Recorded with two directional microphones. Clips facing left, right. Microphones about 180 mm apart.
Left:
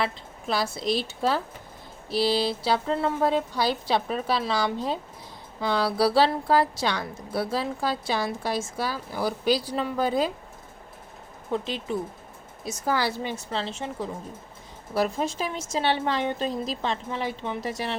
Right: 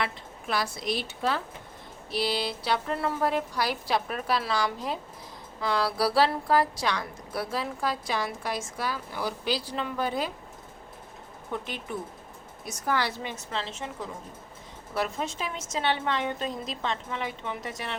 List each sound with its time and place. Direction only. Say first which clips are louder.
0.0 s a woman's voice: left 3 dB; 30° left (ahead or behind)
12.6 s a woman's voice: left 3 dB; 30° left (ahead or behind)